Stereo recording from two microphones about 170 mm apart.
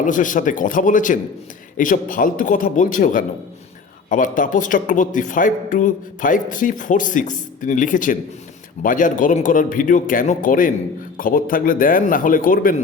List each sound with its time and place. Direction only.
0.0 s speech: 50° left (ahead or behind)